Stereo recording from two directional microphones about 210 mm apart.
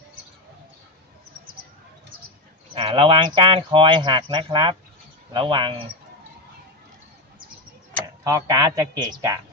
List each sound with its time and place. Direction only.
2.7 s speech: 25° right (ahead or behind)
7.9 s speech: 15° right (ahead or behind)